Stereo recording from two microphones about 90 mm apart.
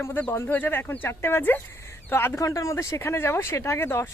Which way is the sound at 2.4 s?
35° left (ahead or behind).